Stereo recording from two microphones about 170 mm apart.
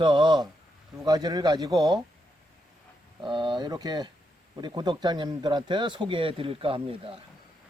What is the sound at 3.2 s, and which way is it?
Speech, 25° right (ahead or behind).